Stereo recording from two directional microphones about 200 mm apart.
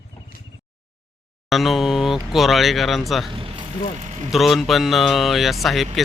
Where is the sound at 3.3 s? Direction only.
25° right (ahead or behind).